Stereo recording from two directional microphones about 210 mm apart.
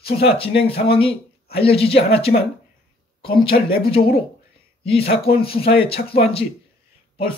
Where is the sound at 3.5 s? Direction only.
45° left (ahead or behind).